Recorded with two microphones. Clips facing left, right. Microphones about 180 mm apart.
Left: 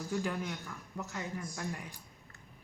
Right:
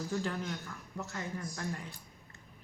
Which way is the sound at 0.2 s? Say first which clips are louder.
Even; 10° left (ahead or behind).